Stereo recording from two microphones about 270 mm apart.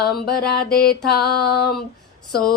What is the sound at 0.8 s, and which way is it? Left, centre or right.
Mantra, left.